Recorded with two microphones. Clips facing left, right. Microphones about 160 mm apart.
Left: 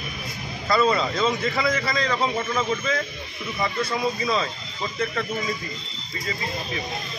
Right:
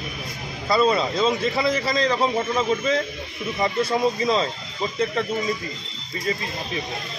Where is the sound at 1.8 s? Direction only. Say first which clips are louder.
Right 3 dB; 20° right (ahead or behind).